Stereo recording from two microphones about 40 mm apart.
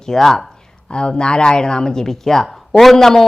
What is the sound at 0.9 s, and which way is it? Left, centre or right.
Speech, left.